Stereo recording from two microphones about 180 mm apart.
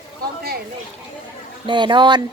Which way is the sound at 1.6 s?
25° right (ahead or behind).